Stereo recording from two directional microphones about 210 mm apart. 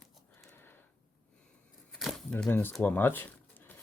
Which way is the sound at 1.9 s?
Centre (ahead or behind).